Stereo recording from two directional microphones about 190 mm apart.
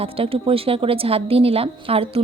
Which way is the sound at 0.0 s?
30° right (ahead or behind).